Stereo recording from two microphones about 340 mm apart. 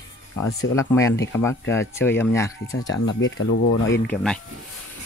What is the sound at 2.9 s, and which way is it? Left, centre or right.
Speech, left.